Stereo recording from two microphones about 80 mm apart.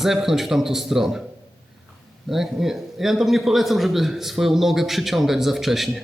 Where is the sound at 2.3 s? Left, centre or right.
Centre.